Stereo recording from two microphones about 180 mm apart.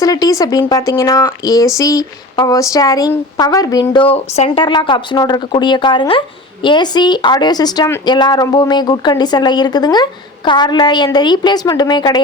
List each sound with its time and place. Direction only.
0.0 s speech: 20° left (ahead or behind)